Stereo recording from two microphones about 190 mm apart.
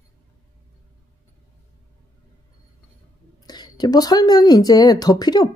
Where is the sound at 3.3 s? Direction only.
20° left (ahead or behind).